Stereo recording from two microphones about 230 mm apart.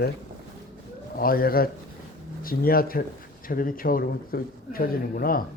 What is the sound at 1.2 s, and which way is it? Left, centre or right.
A man's voice, left.